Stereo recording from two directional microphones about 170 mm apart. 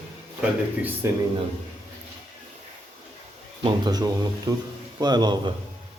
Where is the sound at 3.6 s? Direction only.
25° right (ahead or behind).